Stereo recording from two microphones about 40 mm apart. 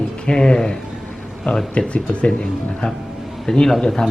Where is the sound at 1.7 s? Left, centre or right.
Left.